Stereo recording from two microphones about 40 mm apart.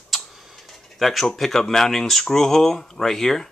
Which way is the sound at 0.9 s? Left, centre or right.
Centre.